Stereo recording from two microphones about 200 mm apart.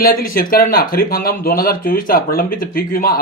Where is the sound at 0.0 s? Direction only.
45° left (ahead or behind).